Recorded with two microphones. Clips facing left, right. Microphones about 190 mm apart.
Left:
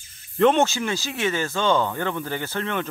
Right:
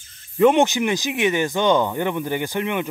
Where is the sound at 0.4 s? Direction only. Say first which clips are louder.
Right 3 dB; 15° right (ahead or behind).